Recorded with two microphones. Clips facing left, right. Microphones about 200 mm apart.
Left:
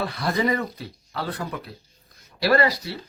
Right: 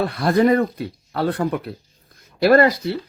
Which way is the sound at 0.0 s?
55° right (ahead or behind).